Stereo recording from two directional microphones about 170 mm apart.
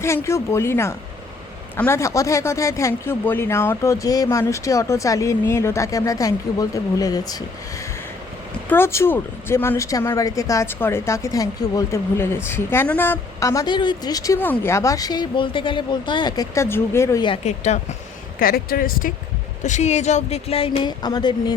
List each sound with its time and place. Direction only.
0.0 s speech: 15° left (ahead or behind)
8.7 s speech: 15° left (ahead or behind)
17.2 s speech: 35° left (ahead or behind)
18.3 s speech: 60° left (ahead or behind)
19.6 s speech: 45° left (ahead or behind); by 21.5 s 25° left (ahead or behind)